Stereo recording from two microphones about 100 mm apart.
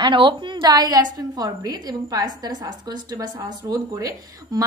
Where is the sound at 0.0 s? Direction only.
55° right (ahead or behind).